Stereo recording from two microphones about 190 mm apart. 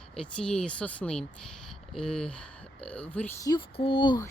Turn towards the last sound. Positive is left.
turn(degrees=25)  # may be behind; listen again after turning